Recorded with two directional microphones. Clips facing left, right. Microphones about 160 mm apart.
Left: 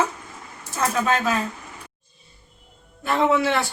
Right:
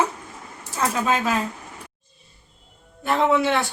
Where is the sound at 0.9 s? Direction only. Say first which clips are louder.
Left 1 dB; 10° right (ahead or behind).